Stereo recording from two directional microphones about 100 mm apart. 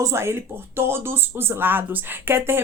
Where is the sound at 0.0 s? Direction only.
25° right (ahead or behind).